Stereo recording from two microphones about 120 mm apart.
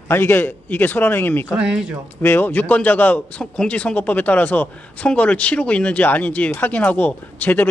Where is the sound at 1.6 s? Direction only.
5° right (ahead or behind).